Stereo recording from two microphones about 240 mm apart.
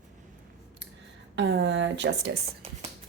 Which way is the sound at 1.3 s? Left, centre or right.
Right.